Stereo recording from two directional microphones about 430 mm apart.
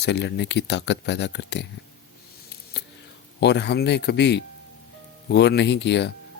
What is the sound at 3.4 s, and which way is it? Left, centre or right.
Speech, left.